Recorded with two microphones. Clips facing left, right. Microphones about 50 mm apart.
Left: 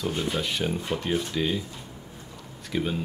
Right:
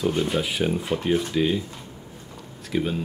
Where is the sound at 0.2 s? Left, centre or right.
Centre.